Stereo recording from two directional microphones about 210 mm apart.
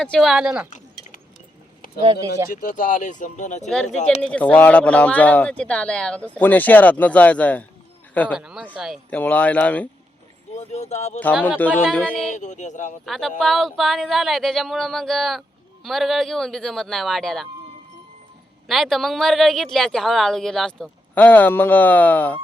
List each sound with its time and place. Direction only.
0.0 s speech: centre (ahead or behind)
0.7 s a sound: 35° left (ahead or behind)
2.5 s speech: 40° left (ahead or behind)
4.2 s speech: 5° left (ahead or behind)
8.4 s speech: 5° right (ahead or behind)
10.6 s speech: 30° left (ahead or behind)
11.4 s speech: 10° left (ahead or behind)
12.3 s speech: 35° left (ahead or behind)
13.1 s speech: centre (ahead or behind)
18.7 s speech: centre (ahead or behind)